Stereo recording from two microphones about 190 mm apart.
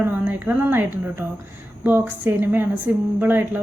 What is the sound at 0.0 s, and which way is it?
A woman's voice, 10° right (ahead or behind).